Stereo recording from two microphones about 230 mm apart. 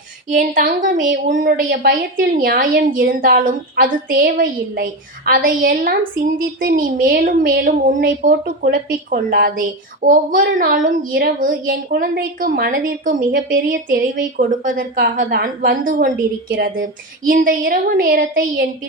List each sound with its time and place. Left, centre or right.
0.3 s speech: right